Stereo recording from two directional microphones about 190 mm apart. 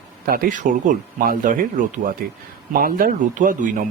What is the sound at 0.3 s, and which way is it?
Speech, 45° right (ahead or behind).